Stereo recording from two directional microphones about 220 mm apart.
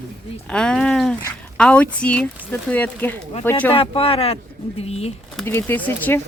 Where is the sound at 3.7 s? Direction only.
25° left (ahead or behind).